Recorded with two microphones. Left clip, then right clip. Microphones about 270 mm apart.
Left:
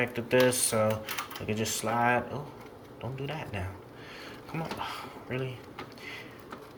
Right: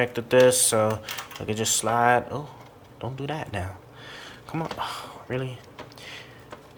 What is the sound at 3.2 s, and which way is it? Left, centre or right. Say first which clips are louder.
Speech: right 6 dB; right.